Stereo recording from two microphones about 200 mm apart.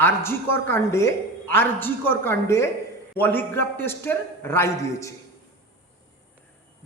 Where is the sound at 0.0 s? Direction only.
10° left (ahead or behind).